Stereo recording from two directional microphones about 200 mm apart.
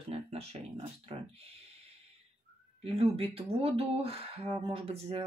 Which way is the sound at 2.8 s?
30° right (ahead or behind).